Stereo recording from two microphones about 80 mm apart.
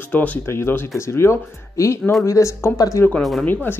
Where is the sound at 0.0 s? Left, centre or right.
Left.